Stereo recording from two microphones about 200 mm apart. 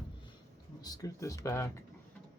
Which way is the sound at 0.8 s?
20° left (ahead or behind).